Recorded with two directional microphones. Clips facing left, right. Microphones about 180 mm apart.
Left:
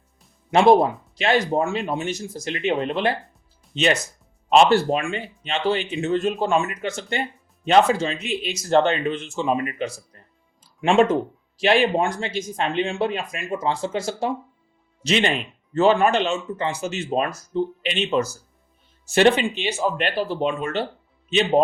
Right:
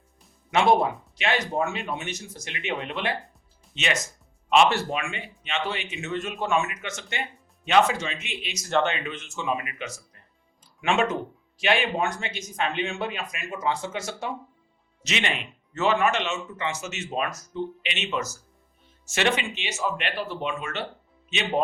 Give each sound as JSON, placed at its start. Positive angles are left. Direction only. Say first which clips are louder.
{"t": 0.5, "sound": "speech", "louder": "left 6 dB", "side_deg": 35}